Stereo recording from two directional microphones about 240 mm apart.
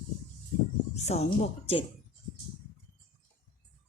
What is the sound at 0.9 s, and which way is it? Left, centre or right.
Speech, left.